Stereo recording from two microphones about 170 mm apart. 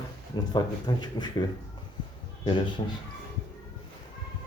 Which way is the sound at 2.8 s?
30° left (ahead or behind).